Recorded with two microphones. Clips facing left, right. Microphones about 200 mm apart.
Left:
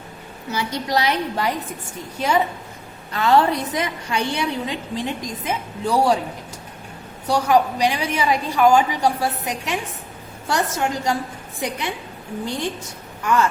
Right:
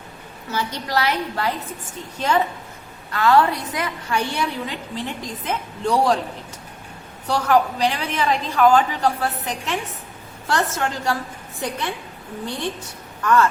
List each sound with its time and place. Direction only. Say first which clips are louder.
0.5 s a woman's voice: left 1 dB; 20° left (ahead or behind)
3.1 s a woman's voice: even; 20° left (ahead or behind)
7.3 s a woman's voice: left 1 dB; 15° left (ahead or behind)
13.2 s a woman's voice: right 2 dB; 15° left (ahead or behind)